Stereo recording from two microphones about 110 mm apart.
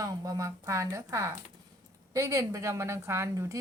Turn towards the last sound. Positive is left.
turn(degrees=-25)  # may be behind; listen again after turning